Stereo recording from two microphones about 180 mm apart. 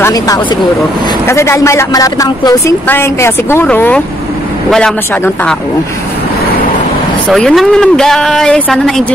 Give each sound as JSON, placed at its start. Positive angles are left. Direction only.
{"t": 0.0, "sound": "vehicle", "side_deg": 20}
{"t": 1.2, "sound": "speech", "side_deg": 15}
{"t": 7.2, "sound": "speech", "side_deg": 5}